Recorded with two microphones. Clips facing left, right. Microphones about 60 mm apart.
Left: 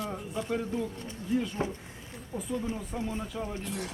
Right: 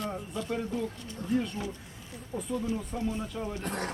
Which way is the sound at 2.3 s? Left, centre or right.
Centre.